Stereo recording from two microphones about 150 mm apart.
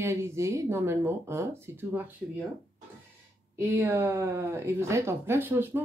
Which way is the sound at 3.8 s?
20° right (ahead or behind).